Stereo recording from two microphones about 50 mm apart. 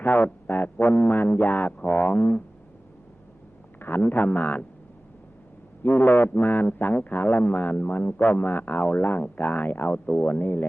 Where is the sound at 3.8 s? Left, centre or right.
Left.